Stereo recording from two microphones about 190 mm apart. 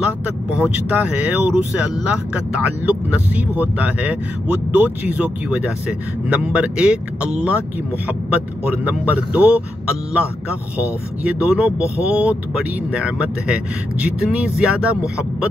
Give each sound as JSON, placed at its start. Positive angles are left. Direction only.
{"t": 0.6, "sound": "speech", "side_deg": -10}